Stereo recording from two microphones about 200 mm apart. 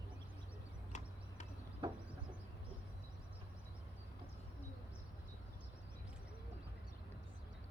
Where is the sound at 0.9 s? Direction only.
35° left (ahead or behind).